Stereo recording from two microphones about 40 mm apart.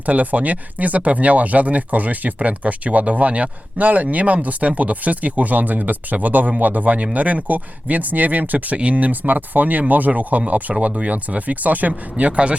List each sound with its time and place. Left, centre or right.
0.0 s speech: right